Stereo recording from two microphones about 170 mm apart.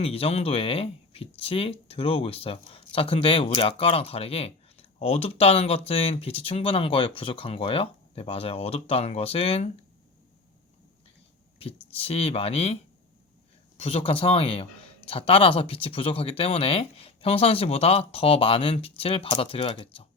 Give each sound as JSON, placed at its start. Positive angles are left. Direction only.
{"t": 0.0, "sound": "speech", "side_deg": 35}
{"t": 11.6, "sound": "speech", "side_deg": 35}